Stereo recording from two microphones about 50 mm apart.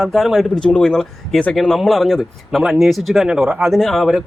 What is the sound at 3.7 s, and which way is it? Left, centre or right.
Speech, centre.